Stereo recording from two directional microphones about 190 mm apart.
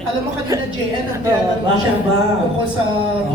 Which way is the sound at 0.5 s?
15° right (ahead or behind).